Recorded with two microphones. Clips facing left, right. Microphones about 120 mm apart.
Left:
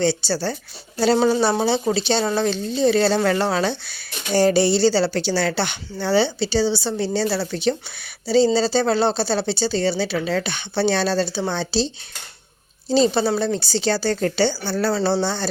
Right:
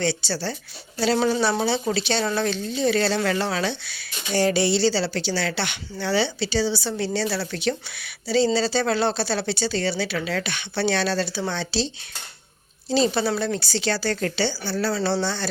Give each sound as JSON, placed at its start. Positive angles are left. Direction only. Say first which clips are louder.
{"t": 0.0, "sound": "speech", "louder": "left 5 dB", "side_deg": 35}
{"t": 12.9, "sound": "speech", "louder": "left 4 dB", "side_deg": 30}
{"t": 14.3, "sound": "a woman's voice", "louder": "left 4 dB", "side_deg": 45}
{"t": 14.9, "sound": "speech", "louder": "left 3 dB", "side_deg": 35}